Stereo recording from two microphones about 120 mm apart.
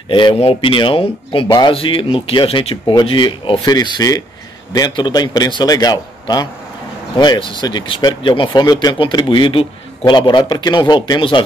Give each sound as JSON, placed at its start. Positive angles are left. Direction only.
{"t": 0.1, "sound": "a man's voice", "side_deg": 45}